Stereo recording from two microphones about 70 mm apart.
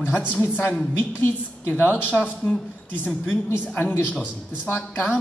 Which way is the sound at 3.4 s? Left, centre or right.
Left.